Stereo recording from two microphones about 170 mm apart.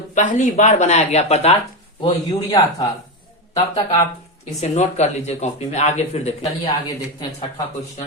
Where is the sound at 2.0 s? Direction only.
30° left (ahead or behind).